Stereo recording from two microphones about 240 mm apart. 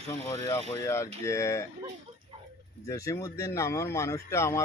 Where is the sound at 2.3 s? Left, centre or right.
Right.